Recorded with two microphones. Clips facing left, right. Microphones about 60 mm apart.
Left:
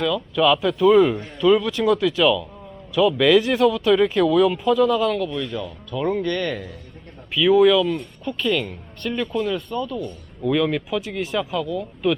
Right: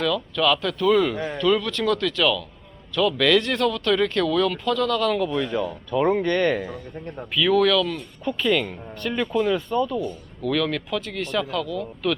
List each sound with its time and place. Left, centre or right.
0.0 s speech: centre
1.1 s speech: right
1.4 s speech: centre
5.1 s speech: centre
5.9 s speech: right
7.3 s speech: centre
8.2 s speech: centre
10.4 s speech: centre